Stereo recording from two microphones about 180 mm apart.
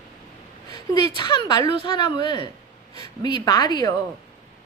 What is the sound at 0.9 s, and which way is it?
A woman's voice, 25° left (ahead or behind).